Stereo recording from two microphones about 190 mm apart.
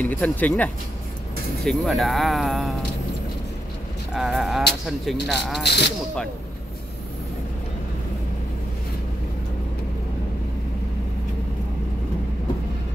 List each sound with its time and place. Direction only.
0.0 s speech: 10° left (ahead or behind)
4.1 s speech: centre (ahead or behind)
5.6 s speech: 60° left (ahead or behind)